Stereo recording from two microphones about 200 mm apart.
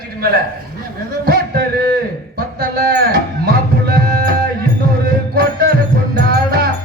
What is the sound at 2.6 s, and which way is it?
Speech, 50° right (ahead or behind).